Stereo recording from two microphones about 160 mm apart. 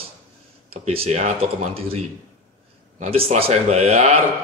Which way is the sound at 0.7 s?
40° right (ahead or behind).